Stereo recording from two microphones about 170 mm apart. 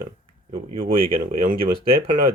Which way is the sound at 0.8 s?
55° right (ahead or behind).